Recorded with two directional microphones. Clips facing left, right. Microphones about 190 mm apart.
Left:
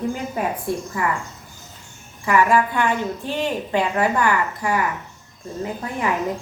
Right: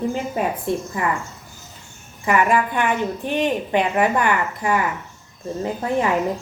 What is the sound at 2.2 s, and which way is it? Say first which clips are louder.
Speech: left 1 dB; 20° right (ahead or behind).